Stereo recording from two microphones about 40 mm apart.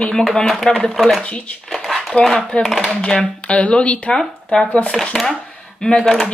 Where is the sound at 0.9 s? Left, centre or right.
Centre.